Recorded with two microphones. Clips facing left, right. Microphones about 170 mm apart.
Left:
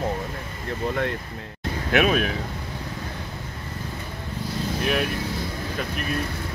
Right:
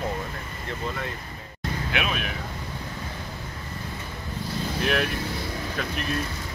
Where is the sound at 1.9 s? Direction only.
45° left (ahead or behind).